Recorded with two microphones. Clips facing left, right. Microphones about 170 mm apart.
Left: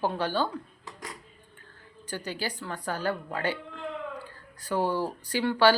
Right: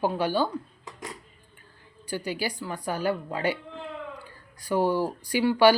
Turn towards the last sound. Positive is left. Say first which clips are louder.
# right 3 dB
turn(degrees=-10)  # may be behind; listen again after turning